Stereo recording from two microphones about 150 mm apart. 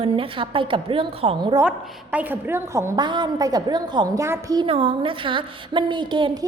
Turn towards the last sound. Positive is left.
turn(degrees=-30)  # may be behind; listen again after turning